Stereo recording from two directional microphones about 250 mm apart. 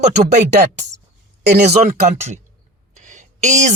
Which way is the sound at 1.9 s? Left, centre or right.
Right.